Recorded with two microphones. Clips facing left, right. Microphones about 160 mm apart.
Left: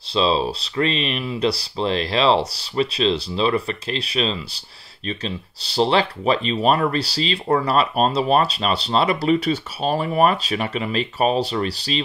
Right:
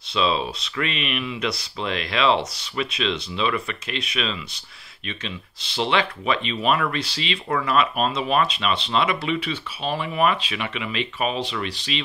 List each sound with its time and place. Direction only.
0.1 s speech: 30° left (ahead or behind)